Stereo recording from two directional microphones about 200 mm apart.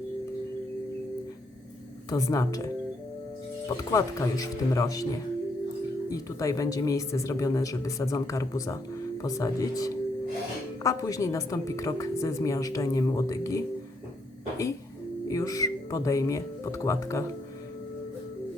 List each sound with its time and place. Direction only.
2.0 s a woman's voice: 15° left (ahead or behind)
3.8 s a woman's voice: 15° left (ahead or behind)
6.1 s a woman's voice: 15° left (ahead or behind)
15.3 s a woman's voice: 15° left (ahead or behind)